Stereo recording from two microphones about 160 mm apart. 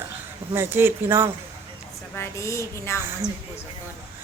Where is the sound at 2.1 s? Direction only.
20° left (ahead or behind).